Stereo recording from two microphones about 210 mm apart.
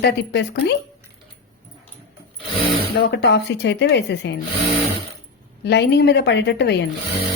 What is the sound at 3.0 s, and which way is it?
Speech, 55° left (ahead or behind).